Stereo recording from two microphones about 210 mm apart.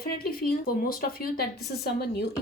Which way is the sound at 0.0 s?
45° left (ahead or behind).